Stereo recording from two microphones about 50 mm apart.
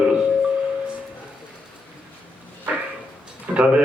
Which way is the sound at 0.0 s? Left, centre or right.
Right.